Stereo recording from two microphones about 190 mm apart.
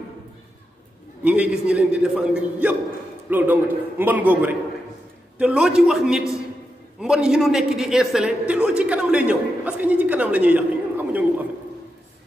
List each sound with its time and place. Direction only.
1.2 s a man's voice: 5° right (ahead or behind)